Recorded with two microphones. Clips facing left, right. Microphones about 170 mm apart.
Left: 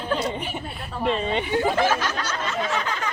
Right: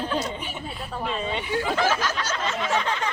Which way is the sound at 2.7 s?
30° right (ahead or behind).